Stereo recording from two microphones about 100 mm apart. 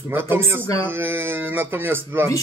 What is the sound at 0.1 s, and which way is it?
Speech, 25° right (ahead or behind).